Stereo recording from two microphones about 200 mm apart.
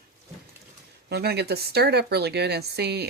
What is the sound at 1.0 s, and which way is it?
Speech, 55° right (ahead or behind).